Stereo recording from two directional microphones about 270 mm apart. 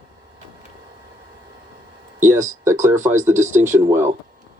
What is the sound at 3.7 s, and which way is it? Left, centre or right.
Speech, centre.